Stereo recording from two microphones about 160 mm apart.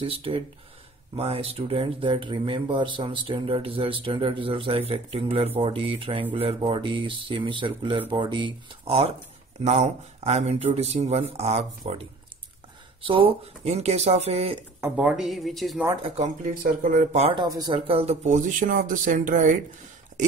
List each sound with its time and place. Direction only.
0.0 s speech: 35° right (ahead or behind)
14.8 s a woman's voice: 5° right (ahead or behind)
16.4 s speech: 55° right (ahead or behind)
17.3 s speech: 25° right (ahead or behind); by 19.5 s 55° right (ahead or behind)